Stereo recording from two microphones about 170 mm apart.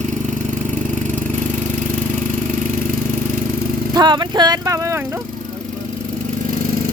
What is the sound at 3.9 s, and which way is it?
Speech, 25° right (ahead or behind).